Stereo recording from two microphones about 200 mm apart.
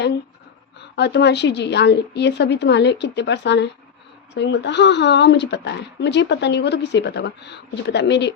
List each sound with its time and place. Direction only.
0.8 s speech: 60° left (ahead or behind)